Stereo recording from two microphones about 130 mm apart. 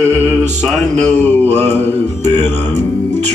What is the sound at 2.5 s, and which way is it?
Music, 15° left (ahead or behind).